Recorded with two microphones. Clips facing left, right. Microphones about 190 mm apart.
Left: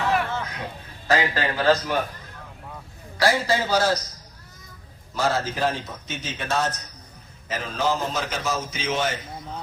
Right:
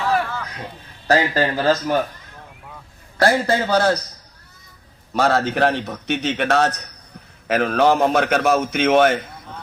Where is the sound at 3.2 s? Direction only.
55° right (ahead or behind).